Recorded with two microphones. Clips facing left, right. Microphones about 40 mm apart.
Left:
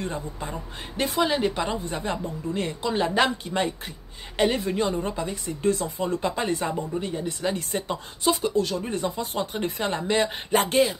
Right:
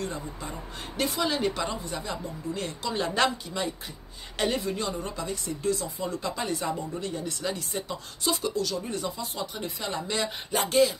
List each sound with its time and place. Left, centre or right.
0.0 s a woman's voice: left
1.8 s speech: left
2.8 s a woman's voice: left
3.5 s speech: left
4.4 s a woman's voice: left
7.0 s a woman's voice: left
8.5 s speech: left